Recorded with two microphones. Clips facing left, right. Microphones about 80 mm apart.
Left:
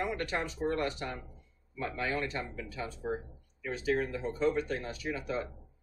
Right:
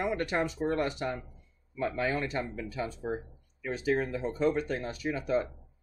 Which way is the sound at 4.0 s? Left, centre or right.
Right.